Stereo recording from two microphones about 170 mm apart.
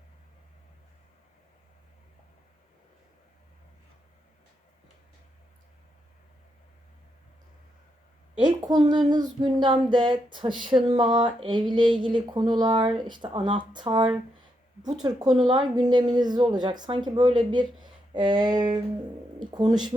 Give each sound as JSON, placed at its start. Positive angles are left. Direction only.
{"t": 8.4, "sound": "speech", "side_deg": -25}